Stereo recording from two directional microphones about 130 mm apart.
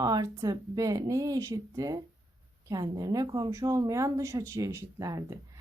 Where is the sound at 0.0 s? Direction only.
30° right (ahead or behind).